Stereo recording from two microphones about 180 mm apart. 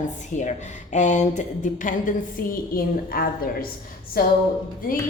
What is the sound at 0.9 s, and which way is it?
A woman's voice, 40° left (ahead or behind).